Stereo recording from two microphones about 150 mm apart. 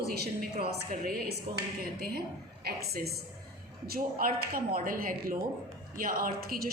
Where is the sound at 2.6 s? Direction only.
90° right.